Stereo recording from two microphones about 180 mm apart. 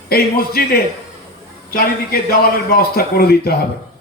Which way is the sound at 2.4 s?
55° left (ahead or behind).